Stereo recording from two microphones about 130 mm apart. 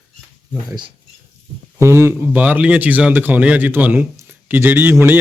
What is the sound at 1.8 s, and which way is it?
Speech, 20° right (ahead or behind).